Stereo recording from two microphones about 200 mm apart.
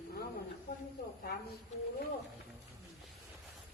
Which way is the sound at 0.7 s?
50° left (ahead or behind).